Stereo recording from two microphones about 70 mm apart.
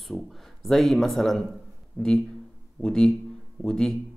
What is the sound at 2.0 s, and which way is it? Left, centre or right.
A man's voice, centre.